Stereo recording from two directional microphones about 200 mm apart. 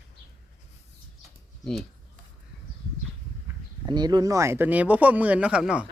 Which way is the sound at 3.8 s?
20° right (ahead or behind).